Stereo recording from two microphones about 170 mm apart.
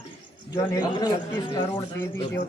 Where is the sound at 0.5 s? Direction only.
25° left (ahead or behind).